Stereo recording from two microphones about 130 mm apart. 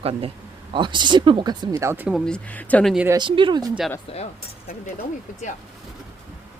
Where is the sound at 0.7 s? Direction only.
35° right (ahead or behind).